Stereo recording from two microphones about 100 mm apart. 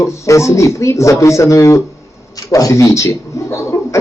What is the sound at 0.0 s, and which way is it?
Speech, 30° left (ahead or behind).